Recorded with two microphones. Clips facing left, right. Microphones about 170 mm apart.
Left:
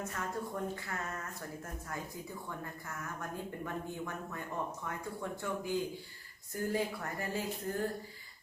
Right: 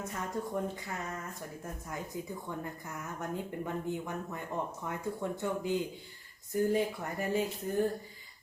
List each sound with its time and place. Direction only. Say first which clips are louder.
0.1 s speech: right 3 dB; 20° right (ahead or behind)
2.8 s speech: right 3 dB; 20° right (ahead or behind)